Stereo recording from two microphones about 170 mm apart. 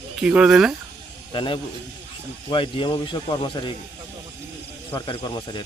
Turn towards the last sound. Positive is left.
turn(degrees=25)  # may be behind; listen again after turning